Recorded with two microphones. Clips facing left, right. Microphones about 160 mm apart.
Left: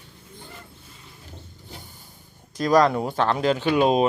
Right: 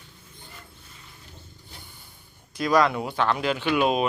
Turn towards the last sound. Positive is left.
turn(degrees=35)  # may be behind; listen again after turning